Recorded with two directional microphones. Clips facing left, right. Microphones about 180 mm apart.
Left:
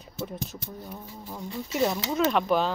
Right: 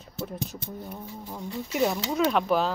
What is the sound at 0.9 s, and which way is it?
Speech, centre (ahead or behind).